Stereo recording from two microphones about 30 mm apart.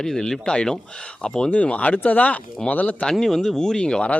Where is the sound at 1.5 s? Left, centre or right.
Left.